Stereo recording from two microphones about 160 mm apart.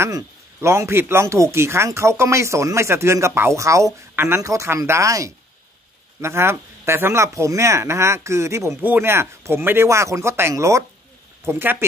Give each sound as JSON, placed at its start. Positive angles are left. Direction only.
{"t": 0.0, "sound": "speech", "side_deg": -15}